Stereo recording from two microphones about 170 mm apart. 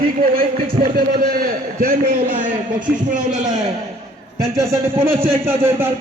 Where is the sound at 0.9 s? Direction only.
60° right (ahead or behind).